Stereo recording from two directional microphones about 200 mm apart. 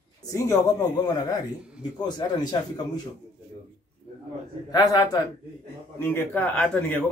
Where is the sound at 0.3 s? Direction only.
15° left (ahead or behind).